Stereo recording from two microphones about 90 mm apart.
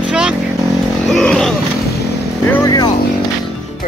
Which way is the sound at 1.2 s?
5° left (ahead or behind).